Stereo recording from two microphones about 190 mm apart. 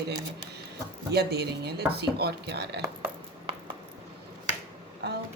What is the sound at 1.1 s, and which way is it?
Speech, 55° right (ahead or behind).